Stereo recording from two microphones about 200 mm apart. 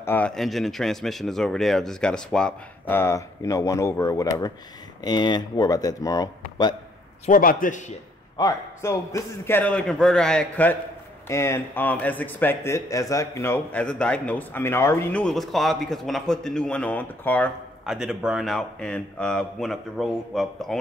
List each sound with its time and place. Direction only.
0.0 s speech: 10° left (ahead or behind)
7.2 s a man's voice: 40° left (ahead or behind)
8.4 s speech: 15° left (ahead or behind)
17.8 s speech: 5° right (ahead or behind)